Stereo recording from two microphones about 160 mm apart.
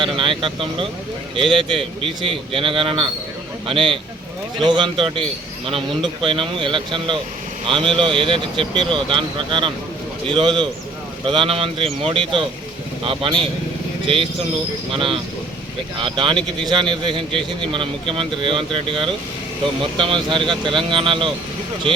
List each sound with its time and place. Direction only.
0.0 s a man's voice: 30° right (ahead or behind)
14.9 s a man's voice: 35° right (ahead or behind)